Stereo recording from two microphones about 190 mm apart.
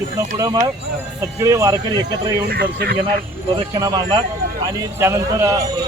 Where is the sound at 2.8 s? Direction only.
60° right (ahead or behind).